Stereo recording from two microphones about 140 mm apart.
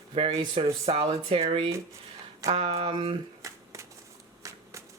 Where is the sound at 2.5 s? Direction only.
40° right (ahead or behind).